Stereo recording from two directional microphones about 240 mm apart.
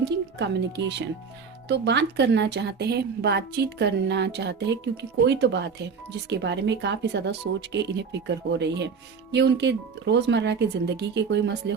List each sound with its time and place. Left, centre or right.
0.0 s speech: right